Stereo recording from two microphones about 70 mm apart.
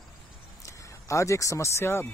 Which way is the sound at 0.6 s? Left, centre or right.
Left.